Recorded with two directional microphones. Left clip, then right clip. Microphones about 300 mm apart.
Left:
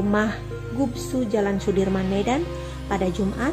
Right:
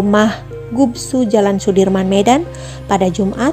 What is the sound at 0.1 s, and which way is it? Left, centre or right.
A woman's voice, right.